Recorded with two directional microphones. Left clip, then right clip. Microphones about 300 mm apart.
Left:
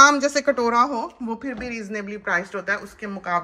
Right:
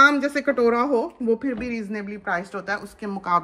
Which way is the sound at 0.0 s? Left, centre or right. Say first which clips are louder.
Left 2 dB; left.